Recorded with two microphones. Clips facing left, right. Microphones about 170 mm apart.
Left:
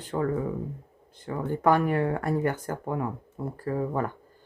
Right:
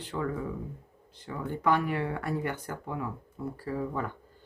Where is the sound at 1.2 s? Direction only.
45° left (ahead or behind).